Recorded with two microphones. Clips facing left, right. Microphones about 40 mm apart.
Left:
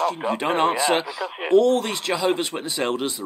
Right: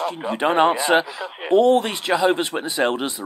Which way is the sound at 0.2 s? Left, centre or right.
Centre.